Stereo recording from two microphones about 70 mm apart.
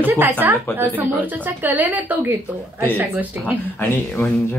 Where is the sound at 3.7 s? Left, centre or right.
Left.